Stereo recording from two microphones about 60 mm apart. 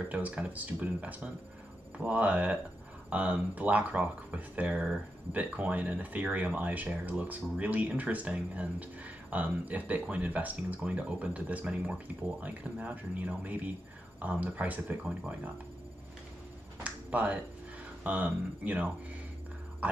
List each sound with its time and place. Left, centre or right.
0.1 s speech: right
16.8 s a sound: right
18.0 s speech: right